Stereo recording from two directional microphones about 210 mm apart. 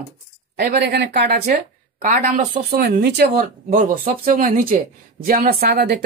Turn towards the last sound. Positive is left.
turn(degrees=-50)  # may be behind; listen again after turning